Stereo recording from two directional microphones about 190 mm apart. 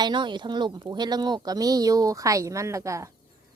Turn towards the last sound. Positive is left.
turn(degrees=-15)  # may be behind; listen again after turning